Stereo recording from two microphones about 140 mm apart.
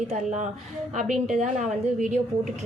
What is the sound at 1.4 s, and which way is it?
Speech, 60° right (ahead or behind).